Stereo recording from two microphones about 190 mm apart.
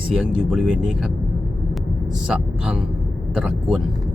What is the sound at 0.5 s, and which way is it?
Speech, centre (ahead or behind).